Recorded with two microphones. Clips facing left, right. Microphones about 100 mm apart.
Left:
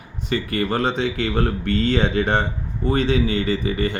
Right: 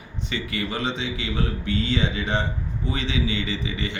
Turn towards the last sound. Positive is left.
turn(degrees=45)  # may be behind; listen again after turning